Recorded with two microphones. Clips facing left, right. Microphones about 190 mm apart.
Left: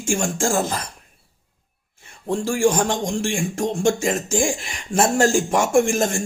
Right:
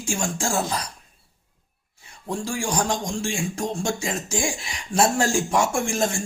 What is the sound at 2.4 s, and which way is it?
Speech, 45° left (ahead or behind).